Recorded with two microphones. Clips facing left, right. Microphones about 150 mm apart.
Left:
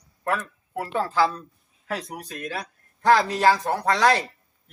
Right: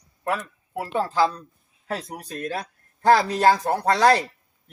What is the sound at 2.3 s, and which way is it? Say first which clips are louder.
Speech: right 5 dB; 35° right (ahead or behind).